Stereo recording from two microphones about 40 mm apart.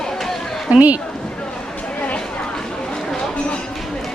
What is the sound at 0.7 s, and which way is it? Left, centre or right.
Speech, right.